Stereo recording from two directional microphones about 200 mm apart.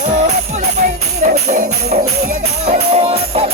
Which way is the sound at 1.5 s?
35° right (ahead or behind).